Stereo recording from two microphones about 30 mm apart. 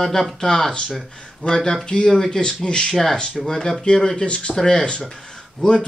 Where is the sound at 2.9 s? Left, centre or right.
Centre.